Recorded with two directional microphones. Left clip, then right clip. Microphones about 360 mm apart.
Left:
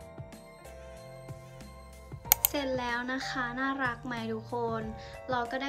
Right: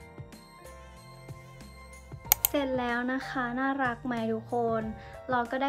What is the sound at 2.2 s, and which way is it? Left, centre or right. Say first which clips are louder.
A woman's voice: right 2 dB; centre.